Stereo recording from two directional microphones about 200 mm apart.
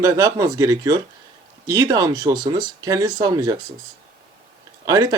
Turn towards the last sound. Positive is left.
turn(degrees=-15)  # may be behind; listen again after turning